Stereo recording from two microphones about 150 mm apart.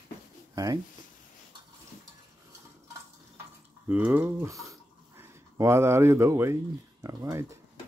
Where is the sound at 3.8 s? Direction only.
10° right (ahead or behind).